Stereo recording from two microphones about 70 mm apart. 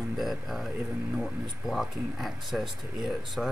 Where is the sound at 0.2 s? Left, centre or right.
Centre.